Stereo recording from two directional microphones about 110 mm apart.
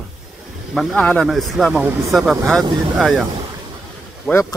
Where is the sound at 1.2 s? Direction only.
Centre (ahead or behind).